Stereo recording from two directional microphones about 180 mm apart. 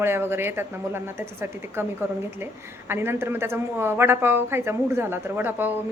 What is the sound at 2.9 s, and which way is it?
A woman's voice, 15° right (ahead or behind).